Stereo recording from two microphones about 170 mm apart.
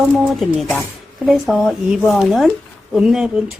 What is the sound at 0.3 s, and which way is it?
A woman's voice, centre (ahead or behind).